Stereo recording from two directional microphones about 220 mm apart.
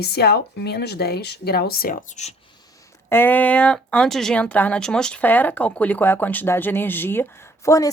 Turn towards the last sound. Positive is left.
turn(degrees=15)  # may be behind; listen again after turning